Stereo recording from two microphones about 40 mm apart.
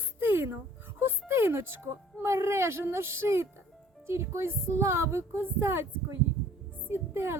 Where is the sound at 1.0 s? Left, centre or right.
Right.